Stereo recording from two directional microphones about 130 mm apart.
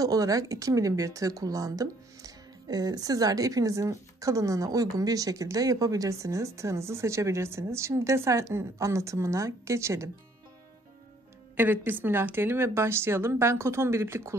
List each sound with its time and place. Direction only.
0.0 s speech: 25° right (ahead or behind)
11.5 s speech: 15° right (ahead or behind)